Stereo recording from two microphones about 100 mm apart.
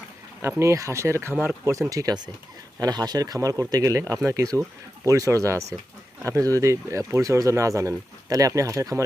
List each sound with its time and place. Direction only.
0.6 s speech: 30° right (ahead or behind)